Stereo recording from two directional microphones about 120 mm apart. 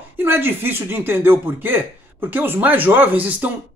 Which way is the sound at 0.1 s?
20° right (ahead or behind).